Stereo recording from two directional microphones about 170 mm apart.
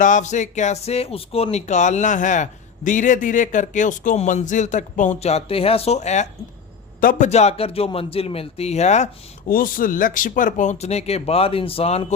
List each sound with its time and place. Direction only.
0.0 s speech: 45° left (ahead or behind)
7.0 s speech: 55° left (ahead or behind)
7.3 s speech: 40° left (ahead or behind)
9.5 s speech: 55° left (ahead or behind); by 12.0 s 35° left (ahead or behind)